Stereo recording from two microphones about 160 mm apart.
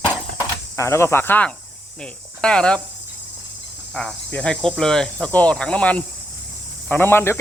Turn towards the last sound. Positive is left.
turn(degrees=15)  # may be behind; listen again after turning